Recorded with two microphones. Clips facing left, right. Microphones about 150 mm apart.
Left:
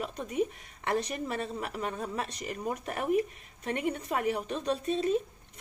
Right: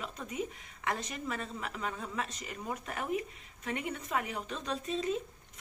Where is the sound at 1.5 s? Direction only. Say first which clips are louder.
Left 4 dB; 45° left (ahead or behind).